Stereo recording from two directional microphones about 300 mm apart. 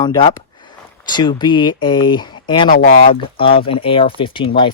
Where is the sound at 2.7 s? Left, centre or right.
Left.